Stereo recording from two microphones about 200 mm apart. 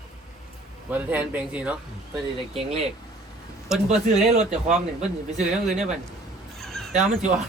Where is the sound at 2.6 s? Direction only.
30° right (ahead or behind).